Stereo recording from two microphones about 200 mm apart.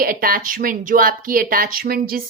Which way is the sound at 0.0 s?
45° right (ahead or behind).